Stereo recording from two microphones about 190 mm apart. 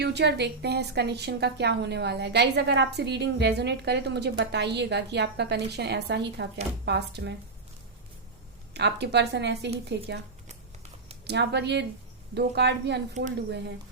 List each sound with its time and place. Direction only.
0.0 s a woman's voice: 60° right (ahead or behind)
8.7 s a woman's voice: 60° right (ahead or behind)
11.3 s a woman's voice: 60° right (ahead or behind)